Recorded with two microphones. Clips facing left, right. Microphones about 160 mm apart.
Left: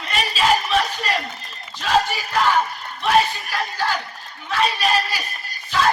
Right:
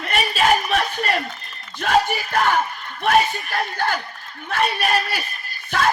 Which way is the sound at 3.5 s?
55° right (ahead or behind).